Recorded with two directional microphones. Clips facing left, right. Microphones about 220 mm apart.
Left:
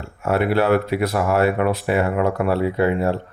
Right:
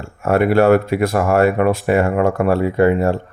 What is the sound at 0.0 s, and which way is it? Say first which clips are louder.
Speech: right 4 dB; 50° right (ahead or behind).